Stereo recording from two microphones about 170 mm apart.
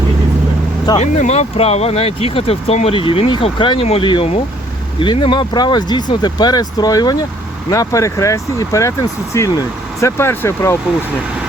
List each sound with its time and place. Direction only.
0.9 s speech: 40° left (ahead or behind); by 10.8 s 15° left (ahead or behind)